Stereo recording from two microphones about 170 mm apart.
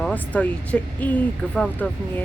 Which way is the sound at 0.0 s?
10° left (ahead or behind).